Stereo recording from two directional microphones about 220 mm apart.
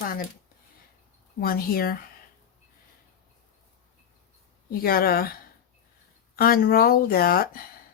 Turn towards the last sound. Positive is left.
turn(degrees=40)  # may be behind; listen again after turning